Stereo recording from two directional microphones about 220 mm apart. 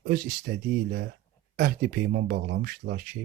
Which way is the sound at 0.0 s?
45° right (ahead or behind).